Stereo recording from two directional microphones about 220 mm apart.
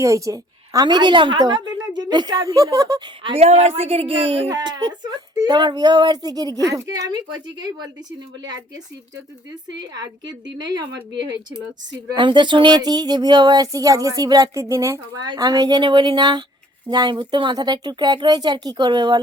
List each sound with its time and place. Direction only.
0.0 s a woman's voice: 15° right (ahead or behind)
9.9 s a woman's voice: 20° right (ahead or behind)